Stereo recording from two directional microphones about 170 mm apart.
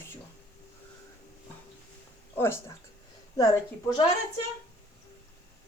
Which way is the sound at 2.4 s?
15° left (ahead or behind).